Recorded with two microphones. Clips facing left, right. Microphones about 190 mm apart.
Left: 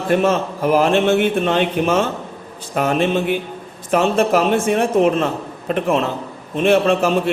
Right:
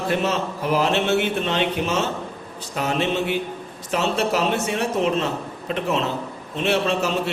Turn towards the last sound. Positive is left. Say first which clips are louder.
# left 6 dB
turn(degrees=50)  # may be behind; listen again after turning